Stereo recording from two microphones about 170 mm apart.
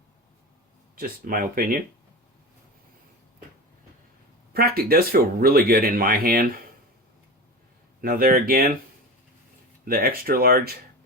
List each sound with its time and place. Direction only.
0.9 s speech: 55° right (ahead or behind)
4.5 s speech: 65° right (ahead or behind)
8.0 s speech: 60° right (ahead or behind)
9.8 s speech: 60° right (ahead or behind)